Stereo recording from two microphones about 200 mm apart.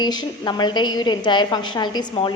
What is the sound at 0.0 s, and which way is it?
A woman's voice, 20° left (ahead or behind).